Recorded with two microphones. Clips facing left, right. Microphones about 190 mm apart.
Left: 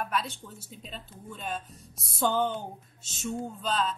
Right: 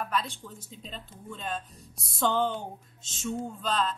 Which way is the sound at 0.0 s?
5° left (ahead or behind).